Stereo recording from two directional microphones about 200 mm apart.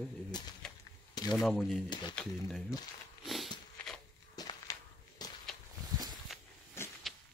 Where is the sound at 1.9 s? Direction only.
20° left (ahead or behind).